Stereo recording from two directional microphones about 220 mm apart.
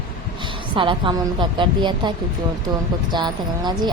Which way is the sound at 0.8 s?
20° right (ahead or behind).